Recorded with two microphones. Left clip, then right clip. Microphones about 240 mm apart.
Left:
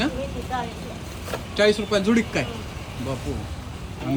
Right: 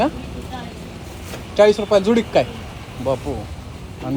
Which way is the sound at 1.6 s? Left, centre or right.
Centre.